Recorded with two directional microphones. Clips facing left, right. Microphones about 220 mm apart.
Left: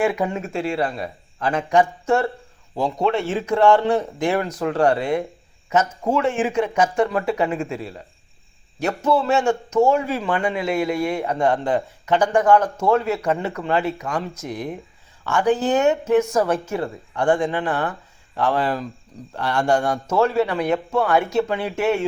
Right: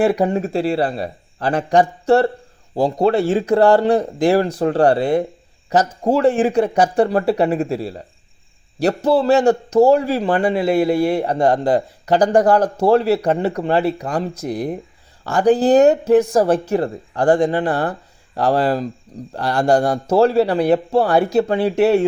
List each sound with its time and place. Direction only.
0.0 s a man's voice: 35° right (ahead or behind)